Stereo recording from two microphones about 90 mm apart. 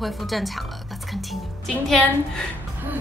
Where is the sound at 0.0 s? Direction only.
Centre (ahead or behind).